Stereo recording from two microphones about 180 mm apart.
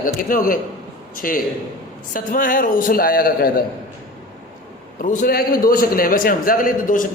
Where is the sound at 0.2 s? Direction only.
50° left (ahead or behind).